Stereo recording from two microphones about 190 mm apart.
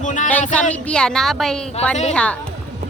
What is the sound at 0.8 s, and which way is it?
A woman's voice, 5° left (ahead or behind).